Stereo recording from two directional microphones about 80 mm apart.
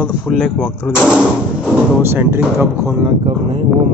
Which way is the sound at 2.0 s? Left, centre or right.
Right.